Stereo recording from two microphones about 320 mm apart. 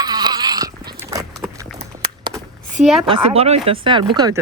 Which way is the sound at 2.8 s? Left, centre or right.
Centre.